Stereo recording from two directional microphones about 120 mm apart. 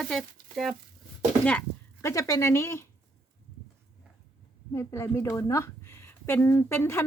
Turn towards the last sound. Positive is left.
turn(degrees=20)  # may be behind; listen again after turning